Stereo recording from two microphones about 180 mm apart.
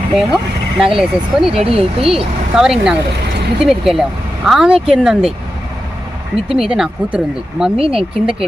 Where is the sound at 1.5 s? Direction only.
30° right (ahead or behind).